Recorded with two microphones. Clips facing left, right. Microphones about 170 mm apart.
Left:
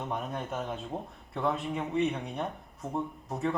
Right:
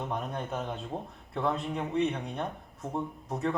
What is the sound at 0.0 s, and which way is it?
Speech, centre (ahead or behind).